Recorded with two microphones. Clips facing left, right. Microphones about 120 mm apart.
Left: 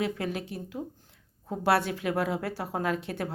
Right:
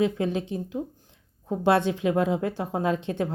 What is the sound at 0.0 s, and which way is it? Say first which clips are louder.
A woman's voice: right 6 dB; 20° right (ahead or behind).